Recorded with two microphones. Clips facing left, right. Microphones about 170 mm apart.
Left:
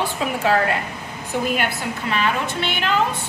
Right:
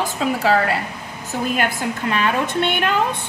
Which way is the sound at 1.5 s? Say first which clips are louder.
Right 2 dB; 45° right (ahead or behind).